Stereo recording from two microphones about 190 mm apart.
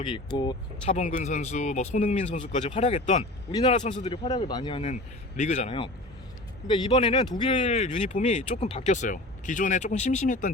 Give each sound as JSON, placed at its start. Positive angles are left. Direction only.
{"t": 0.0, "sound": "speech", "side_deg": 25}
{"t": 0.9, "sound": "speech", "side_deg": 40}
{"t": 6.7, "sound": "speech", "side_deg": 25}
{"t": 7.5, "sound": "speech", "side_deg": 35}